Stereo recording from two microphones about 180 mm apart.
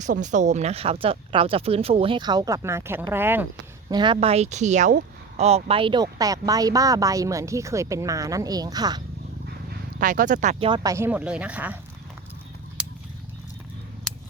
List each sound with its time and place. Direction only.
0.0 s speech: 45° right (ahead or behind); by 3.4 s 10° right (ahead or behind)
3.8 s speech: 25° right (ahead or behind)
10.0 s speech: 45° right (ahead or behind)
10.7 s speech: 15° right (ahead or behind)
12.8 s a sound: 5° right (ahead or behind)
14.1 s a sound: 5° left (ahead or behind)